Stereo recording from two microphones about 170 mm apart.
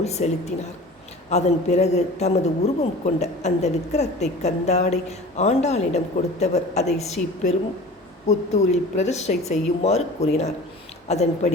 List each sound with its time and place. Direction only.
0.0 s a woman's voice: 40° left (ahead or behind)
1.3 s a man's voice: 40° left (ahead or behind)